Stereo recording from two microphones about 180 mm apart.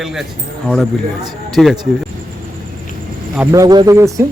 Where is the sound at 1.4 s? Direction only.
Centre (ahead or behind).